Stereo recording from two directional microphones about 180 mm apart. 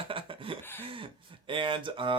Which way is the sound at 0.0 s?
30° right (ahead or behind).